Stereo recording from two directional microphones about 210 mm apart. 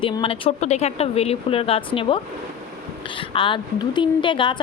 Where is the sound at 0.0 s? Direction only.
25° left (ahead or behind).